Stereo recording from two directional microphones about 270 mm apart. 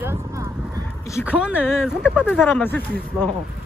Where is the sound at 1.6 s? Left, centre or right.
Centre.